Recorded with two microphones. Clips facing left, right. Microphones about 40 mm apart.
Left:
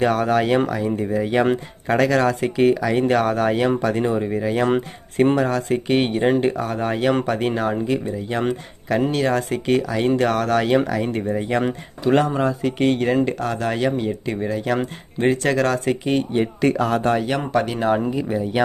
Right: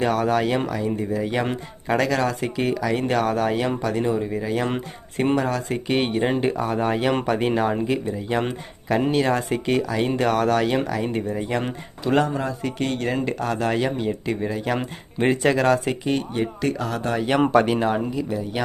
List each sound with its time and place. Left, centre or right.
0.0 s speech: centre
13.1 s speech: centre
16.3 s speech: centre
16.8 s speech: left
17.5 s speech: right
18.1 s speech: left